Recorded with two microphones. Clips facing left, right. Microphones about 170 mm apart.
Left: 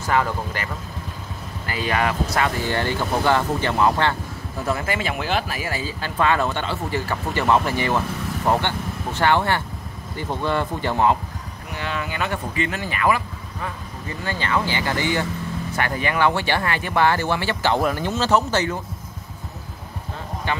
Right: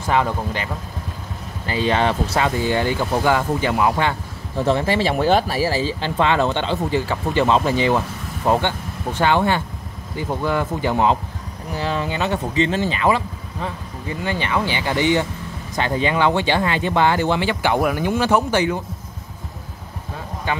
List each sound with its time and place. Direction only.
0.0 s speech: 20° right (ahead or behind)
1.7 s speech: 25° right (ahead or behind)
4.6 s speech: 30° right (ahead or behind)
11.7 s speech: 35° right (ahead or behind); by 18.8 s 15° right (ahead or behind)